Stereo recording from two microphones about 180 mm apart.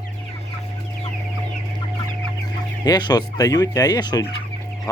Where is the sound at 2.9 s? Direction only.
20° left (ahead or behind).